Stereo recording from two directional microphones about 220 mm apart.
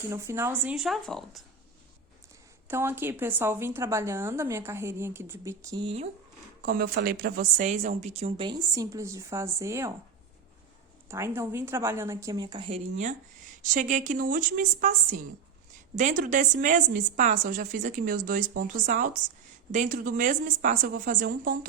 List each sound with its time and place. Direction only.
0.1 s speech: 10° right (ahead or behind)
2.6 s a woman's voice: 10° right (ahead or behind)
6.6 s a woman's voice: 40° right (ahead or behind); by 9.9 s 15° right (ahead or behind)
11.1 s a woman's voice: 10° right (ahead or behind); by 21.7 s 40° right (ahead or behind)